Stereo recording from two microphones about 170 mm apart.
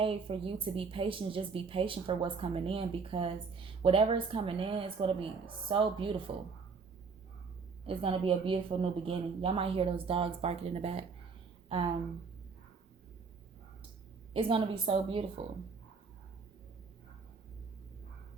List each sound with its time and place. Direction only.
0.0 s a woman's voice: 30° right (ahead or behind)
7.9 s a woman's voice: 30° right (ahead or behind)
14.3 s a woman's voice: 30° right (ahead or behind)